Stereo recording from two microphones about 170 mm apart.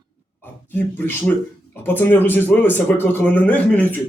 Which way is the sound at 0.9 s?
15° left (ahead or behind).